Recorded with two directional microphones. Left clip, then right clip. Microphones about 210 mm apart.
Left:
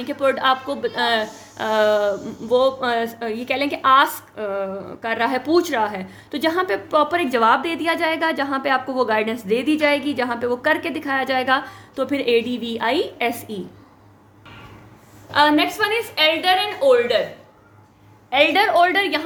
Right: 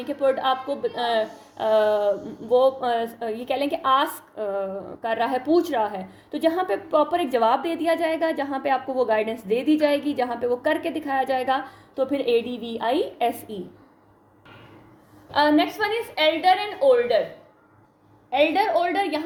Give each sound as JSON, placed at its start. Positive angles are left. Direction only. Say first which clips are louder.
{"t": 0.3, "sound": "a woman's voice", "louder": "left 4 dB", "side_deg": 25}
{"t": 15.3, "sound": "a woman's voice", "louder": "left 3 dB", "side_deg": 20}
{"t": 18.3, "sound": "a woman's voice", "louder": "left 4 dB", "side_deg": 25}